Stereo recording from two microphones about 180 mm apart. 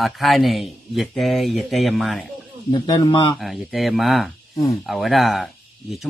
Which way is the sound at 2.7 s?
25° left (ahead or behind).